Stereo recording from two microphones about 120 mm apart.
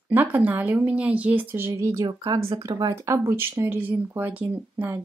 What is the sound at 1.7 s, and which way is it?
Speech, 25° right (ahead or behind).